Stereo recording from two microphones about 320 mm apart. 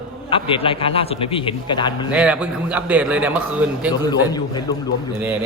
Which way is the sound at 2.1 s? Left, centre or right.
Centre.